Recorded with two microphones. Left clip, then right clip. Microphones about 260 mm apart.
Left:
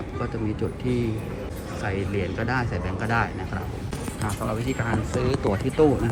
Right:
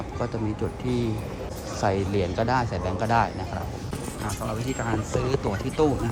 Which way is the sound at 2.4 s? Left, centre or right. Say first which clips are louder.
Right 4 dB; centre.